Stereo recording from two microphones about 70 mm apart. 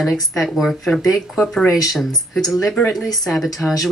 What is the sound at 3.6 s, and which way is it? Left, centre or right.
Speech, left.